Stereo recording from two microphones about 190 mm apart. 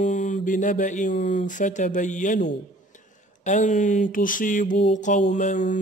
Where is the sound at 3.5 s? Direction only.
40° left (ahead or behind).